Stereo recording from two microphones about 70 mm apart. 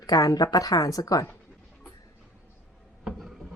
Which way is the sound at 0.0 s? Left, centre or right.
Left.